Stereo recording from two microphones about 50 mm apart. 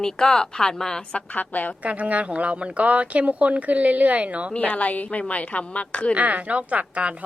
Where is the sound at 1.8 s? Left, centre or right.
Right.